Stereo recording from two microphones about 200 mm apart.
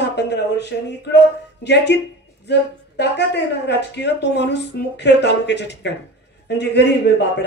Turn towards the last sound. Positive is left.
turn(degrees=60)  # may be behind; listen again after turning